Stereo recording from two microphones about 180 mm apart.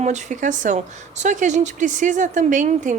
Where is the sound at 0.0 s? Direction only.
40° right (ahead or behind).